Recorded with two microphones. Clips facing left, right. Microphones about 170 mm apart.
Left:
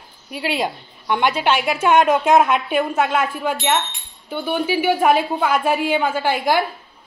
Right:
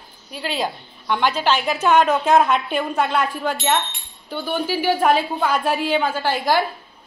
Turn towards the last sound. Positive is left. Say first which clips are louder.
# left 1 dB
turn(degrees=10)  # may be behind; listen again after turning